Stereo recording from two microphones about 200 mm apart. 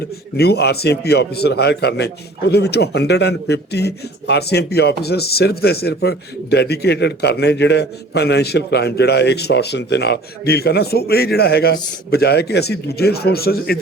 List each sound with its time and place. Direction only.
0.3 s a man's voice: 55° left (ahead or behind)